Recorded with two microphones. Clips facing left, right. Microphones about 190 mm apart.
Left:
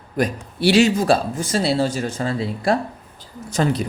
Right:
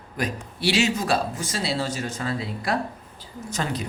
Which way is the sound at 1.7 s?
30° left (ahead or behind).